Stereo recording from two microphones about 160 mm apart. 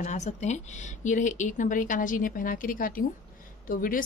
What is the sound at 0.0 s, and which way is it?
A woman's voice, 45° left (ahead or behind).